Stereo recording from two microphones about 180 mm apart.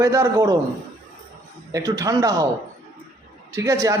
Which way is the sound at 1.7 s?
20° right (ahead or behind).